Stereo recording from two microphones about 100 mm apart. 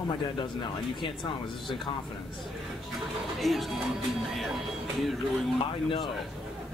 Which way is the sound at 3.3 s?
Centre (ahead or behind).